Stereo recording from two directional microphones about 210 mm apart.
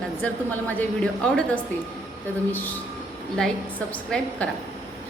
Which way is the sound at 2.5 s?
10° left (ahead or behind).